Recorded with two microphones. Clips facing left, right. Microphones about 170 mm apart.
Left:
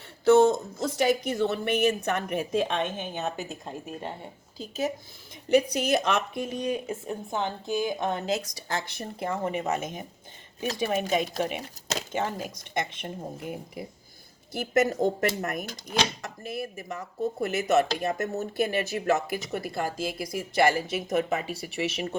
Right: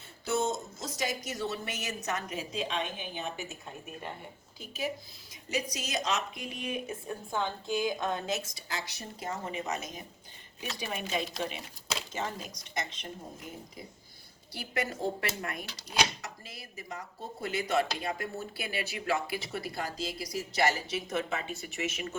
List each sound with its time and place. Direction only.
0.4 s a woman's voice: 60° left (ahead or behind); by 4.1 s 35° left (ahead or behind)
5.5 s a woman's voice: 60° left (ahead or behind)
6.7 s a woman's voice: 25° left (ahead or behind)
8.7 s a woman's voice: 55° left (ahead or behind)
14.5 s speech: 45° left (ahead or behind)
21.5 s speech: 35° left (ahead or behind)